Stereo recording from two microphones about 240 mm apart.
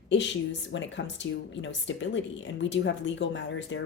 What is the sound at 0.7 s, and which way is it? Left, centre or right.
Speech, left.